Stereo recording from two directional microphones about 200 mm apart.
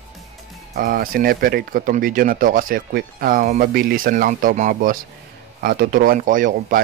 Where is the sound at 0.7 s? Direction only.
45° right (ahead or behind).